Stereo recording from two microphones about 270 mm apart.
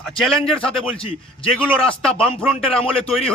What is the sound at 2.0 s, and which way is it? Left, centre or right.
Speech, centre.